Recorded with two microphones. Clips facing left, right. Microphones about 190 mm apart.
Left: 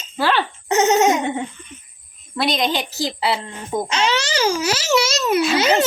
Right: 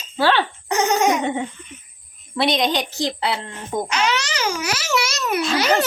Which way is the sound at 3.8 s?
25° left (ahead or behind).